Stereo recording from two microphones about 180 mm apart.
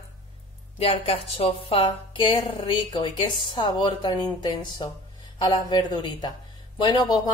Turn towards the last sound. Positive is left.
turn(degrees=25)  # may be behind; listen again after turning